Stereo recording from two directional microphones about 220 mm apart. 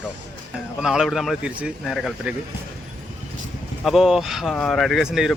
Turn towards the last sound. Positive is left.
turn(degrees=0)  # may be behind; listen again after turning